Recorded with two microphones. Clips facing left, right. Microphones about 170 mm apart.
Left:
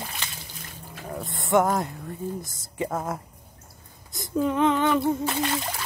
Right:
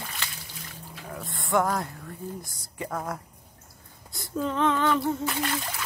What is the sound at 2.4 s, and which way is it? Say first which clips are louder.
Speech: left 6 dB; 20° left (ahead or behind).